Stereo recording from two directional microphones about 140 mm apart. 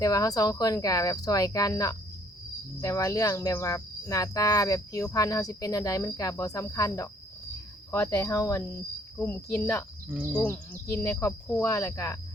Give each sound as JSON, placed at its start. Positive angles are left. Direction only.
{"t": 0.0, "sound": "cricket", "side_deg": 25}
{"t": 9.1, "sound": "speech", "side_deg": 15}
{"t": 10.1, "sound": "speech", "side_deg": -15}
{"t": 10.4, "sound": "speech", "side_deg": 15}
{"t": 11.6, "sound": "cricket", "side_deg": 20}